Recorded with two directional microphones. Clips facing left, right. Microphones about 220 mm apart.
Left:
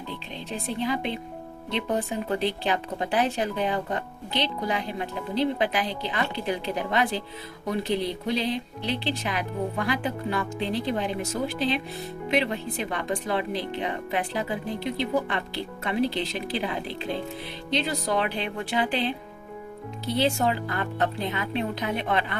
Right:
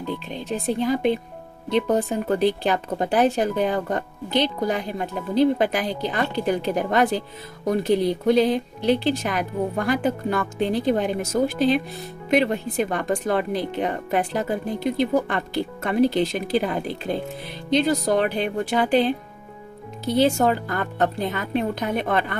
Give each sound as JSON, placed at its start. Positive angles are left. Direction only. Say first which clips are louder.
{"t": 0.3, "sound": "speech", "louder": "right 6 dB", "side_deg": -45}